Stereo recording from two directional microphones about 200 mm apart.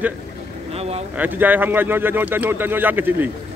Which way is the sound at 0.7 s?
30° right (ahead or behind).